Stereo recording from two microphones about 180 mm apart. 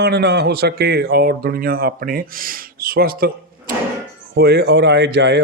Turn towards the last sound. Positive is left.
turn(degrees=-70)  # may be behind; listen again after turning